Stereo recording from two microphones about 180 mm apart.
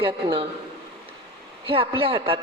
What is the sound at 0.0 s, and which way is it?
Speech, 30° right (ahead or behind).